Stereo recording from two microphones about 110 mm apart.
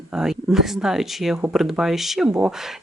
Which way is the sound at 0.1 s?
5° right (ahead or behind).